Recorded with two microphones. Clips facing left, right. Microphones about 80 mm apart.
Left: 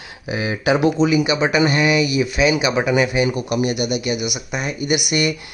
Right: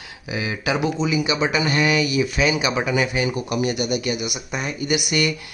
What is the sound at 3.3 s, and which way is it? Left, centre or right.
Speech, right.